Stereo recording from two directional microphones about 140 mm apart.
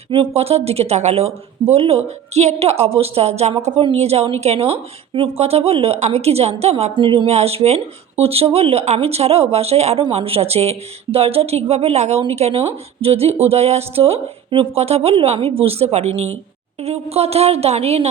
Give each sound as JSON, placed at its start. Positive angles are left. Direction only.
{"t": 0.1, "sound": "a woman's voice", "side_deg": -45}